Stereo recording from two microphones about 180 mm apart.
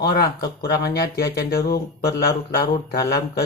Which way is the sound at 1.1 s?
60° left (ahead or behind).